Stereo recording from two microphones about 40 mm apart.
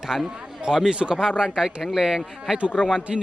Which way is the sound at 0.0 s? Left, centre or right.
Centre.